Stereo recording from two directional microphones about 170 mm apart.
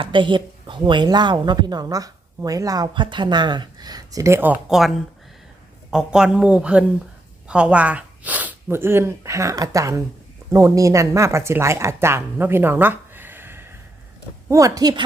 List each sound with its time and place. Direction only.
0.0 s a woman's voice: 30° right (ahead or behind)
4.7 s speech: centre (ahead or behind)
5.9 s a woman's voice: 5° right (ahead or behind); by 15.0 s 20° right (ahead or behind)